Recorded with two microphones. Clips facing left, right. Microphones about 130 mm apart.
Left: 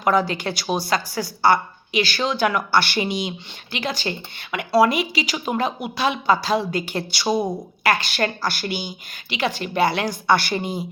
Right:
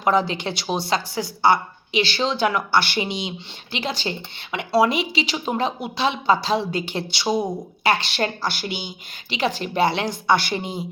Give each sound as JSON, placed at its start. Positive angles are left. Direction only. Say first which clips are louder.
{"t": 0.0, "sound": "speech", "louder": "even", "side_deg": -25}
{"t": 7.3, "sound": "speech", "louder": "left 1 dB", "side_deg": 5}
{"t": 7.9, "sound": "speech", "louder": "even", "side_deg": -30}
{"t": 9.3, "sound": "speech", "louder": "even", "side_deg": -35}